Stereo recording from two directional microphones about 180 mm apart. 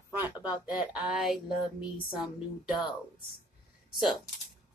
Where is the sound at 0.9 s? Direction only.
5° right (ahead or behind).